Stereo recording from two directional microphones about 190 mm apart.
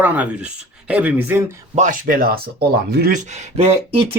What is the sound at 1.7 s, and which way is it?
Speech, 45° right (ahead or behind).